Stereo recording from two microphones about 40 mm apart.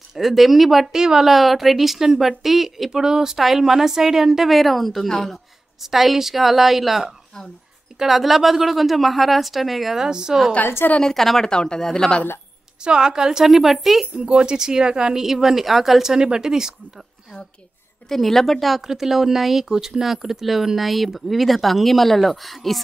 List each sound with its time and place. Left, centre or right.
0.1 s speech: centre
0.9 s speech: centre
1.3 s speech: centre
4.5 s speech: centre
5.8 s speech: centre
9.9 s speech: centre
10.6 s a woman's voice: left
11.1 s speech: centre
11.4 s speech: centre
12.8 s speech: centre
14.1 s speech: right
18.0 s speech: centre